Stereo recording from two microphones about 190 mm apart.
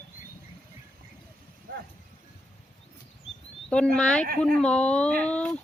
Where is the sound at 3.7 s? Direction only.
5° left (ahead or behind).